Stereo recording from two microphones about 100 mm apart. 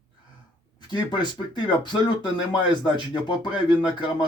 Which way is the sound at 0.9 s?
50° left (ahead or behind).